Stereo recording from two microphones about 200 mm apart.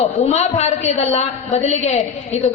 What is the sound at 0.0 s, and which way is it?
A man's voice, 35° left (ahead or behind).